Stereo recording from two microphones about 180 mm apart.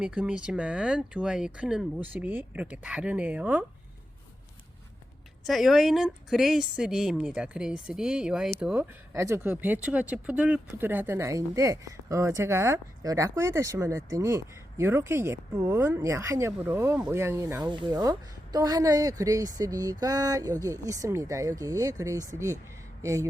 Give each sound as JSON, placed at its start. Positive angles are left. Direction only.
{"t": 0.0, "sound": "speech", "side_deg": -5}
{"t": 5.5, "sound": "speech", "side_deg": 0}